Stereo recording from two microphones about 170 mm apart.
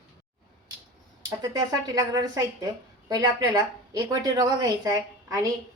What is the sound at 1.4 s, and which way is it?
A woman's voice, 20° right (ahead or behind).